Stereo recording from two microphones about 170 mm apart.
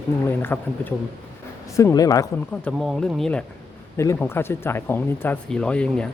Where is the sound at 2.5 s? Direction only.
5° left (ahead or behind).